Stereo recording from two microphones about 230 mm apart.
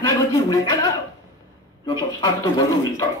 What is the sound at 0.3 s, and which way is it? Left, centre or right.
Speech, centre.